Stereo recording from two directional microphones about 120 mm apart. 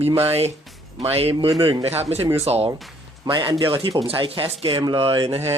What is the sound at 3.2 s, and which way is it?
Speech, 45° right (ahead or behind).